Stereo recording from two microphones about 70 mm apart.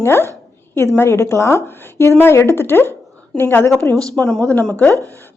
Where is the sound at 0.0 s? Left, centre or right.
Left.